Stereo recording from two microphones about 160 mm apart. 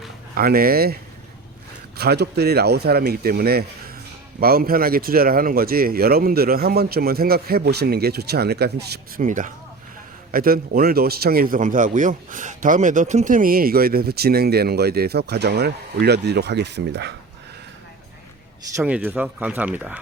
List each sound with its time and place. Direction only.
0.3 s a man's voice: 65° right (ahead or behind)
2.0 s speech: 90° right
3.0 s a man's voice: 70° right (ahead or behind); by 9.2 s 85° right
9.2 s speech: 55° right (ahead or behind)
10.3 s a man's voice: 65° right (ahead or behind); by 17.2 s 90° right
18.8 s speech: 10° right (ahead or behind)